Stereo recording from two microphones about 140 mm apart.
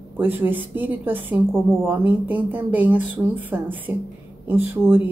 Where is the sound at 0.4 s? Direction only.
15° right (ahead or behind).